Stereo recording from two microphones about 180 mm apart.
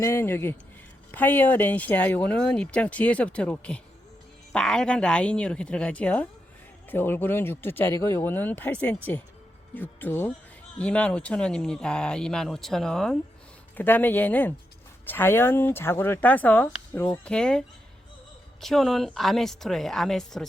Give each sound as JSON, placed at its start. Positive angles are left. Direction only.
{"t": 0.0, "sound": "speech", "side_deg": 15}
{"t": 18.6, "sound": "speech", "side_deg": 0}